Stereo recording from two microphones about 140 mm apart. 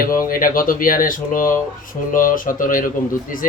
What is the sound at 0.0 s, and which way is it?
A man's voice, 90° left.